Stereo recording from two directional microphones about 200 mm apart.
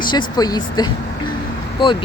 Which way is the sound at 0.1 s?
20° left (ahead or behind).